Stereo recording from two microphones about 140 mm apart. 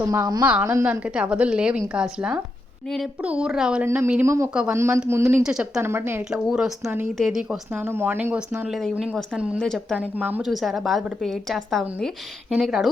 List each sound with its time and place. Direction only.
0.0 s a woman's voice: 25° right (ahead or behind)
0.4 s speech: 15° right (ahead or behind)
3.8 s a woman's voice: 20° right (ahead or behind)
5.4 s a woman's voice: 5° right (ahead or behind)
5.8 s speech: 15° right (ahead or behind)
6.3 s a woman's voice: 5° right (ahead or behind)
7.8 s a woman's voice: 15° right (ahead or behind)